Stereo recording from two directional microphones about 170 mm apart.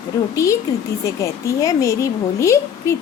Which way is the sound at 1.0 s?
15° left (ahead or behind).